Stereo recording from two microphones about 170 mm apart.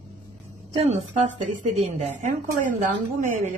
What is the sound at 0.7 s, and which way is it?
A woman's voice, 40° right (ahead or behind).